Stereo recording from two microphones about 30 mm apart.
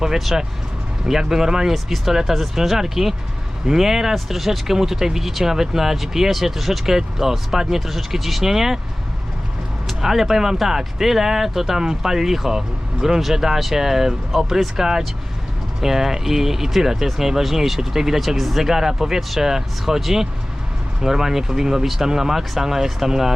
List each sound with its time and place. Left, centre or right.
0.3 s speech: centre
10.0 s speech: centre